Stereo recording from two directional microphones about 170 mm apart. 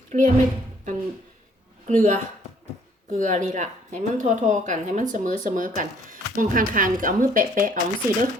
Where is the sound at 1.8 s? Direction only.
45° right (ahead or behind).